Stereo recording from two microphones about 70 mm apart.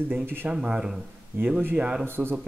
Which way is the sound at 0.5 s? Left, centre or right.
Centre.